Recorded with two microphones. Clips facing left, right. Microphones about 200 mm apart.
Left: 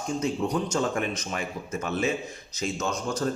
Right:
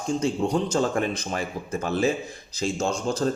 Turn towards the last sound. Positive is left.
turn(degrees=-30)  # may be behind; listen again after turning